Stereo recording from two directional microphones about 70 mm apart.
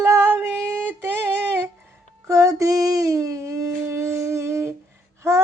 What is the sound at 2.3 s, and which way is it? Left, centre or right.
Child singing, right.